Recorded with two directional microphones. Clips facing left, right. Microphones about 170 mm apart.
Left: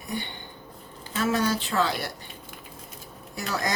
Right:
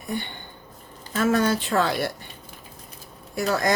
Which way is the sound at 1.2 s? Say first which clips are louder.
Right 4 dB; 50° right (ahead or behind).